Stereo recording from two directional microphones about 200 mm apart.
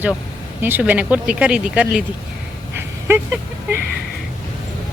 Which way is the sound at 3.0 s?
10° right (ahead or behind).